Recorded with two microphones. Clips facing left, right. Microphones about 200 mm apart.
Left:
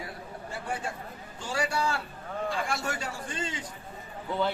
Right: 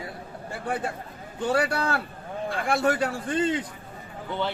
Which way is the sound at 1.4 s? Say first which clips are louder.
Right 6 dB; 60° right (ahead or behind).